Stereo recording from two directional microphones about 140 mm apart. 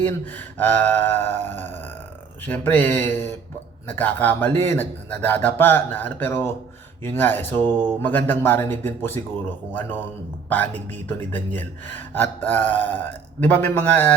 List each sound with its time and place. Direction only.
0.0 s a man's voice: 15° left (ahead or behind)
7.7 s speech: 30° right (ahead or behind)
8.0 s a man's voice: 15° left (ahead or behind)